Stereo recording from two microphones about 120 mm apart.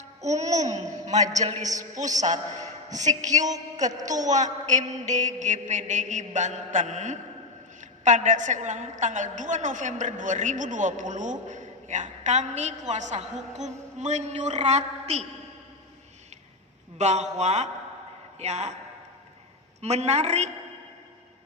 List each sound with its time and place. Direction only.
0.2 s a woman's voice: 70° right (ahead or behind)
17.0 s speech: 70° right (ahead or behind)
19.8 s speech: 65° right (ahead or behind)